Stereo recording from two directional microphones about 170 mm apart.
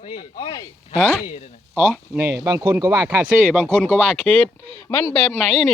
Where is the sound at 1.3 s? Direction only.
40° left (ahead or behind).